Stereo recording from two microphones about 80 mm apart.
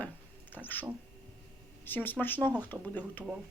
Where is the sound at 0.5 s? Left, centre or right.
Left.